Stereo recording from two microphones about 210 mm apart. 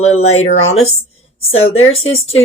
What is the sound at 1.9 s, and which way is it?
Speech, 30° left (ahead or behind).